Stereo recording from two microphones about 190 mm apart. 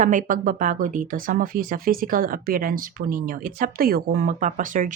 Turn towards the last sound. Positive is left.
turn(degrees=-45)  # may be behind; listen again after turning